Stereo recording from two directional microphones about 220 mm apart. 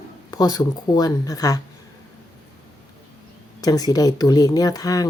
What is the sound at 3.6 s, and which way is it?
Speech, 15° left (ahead or behind).